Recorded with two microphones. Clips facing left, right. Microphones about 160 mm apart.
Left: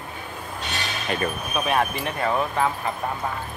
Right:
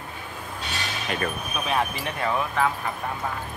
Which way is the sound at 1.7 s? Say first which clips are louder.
Left 2 dB; 60° left (ahead or behind).